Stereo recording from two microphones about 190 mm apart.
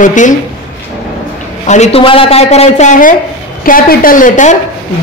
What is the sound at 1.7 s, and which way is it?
A woman's voice, 35° left (ahead or behind).